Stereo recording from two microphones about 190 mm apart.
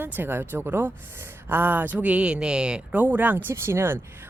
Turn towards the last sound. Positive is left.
turn(degrees=-10)  # may be behind; listen again after turning